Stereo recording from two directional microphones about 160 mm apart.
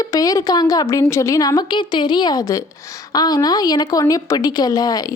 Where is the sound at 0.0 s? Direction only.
20° left (ahead or behind).